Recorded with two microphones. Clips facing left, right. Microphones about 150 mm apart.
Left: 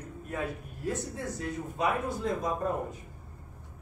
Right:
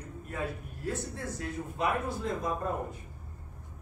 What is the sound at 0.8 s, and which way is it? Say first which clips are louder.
Speech: left 2 dB; 15° left (ahead or behind).